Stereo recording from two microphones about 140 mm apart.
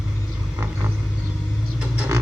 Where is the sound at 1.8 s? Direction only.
10° right (ahead or behind).